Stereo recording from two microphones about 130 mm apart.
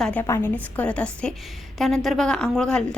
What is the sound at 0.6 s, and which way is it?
Speech, 10° left (ahead or behind).